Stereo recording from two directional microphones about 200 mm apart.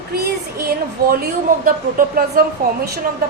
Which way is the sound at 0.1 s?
50° right (ahead or behind).